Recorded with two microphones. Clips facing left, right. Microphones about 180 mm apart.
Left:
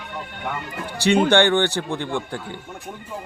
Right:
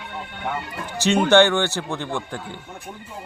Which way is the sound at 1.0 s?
15° left (ahead or behind).